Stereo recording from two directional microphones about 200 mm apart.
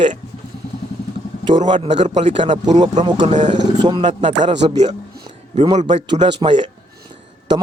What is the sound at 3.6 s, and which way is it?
Speech, 20° right (ahead or behind).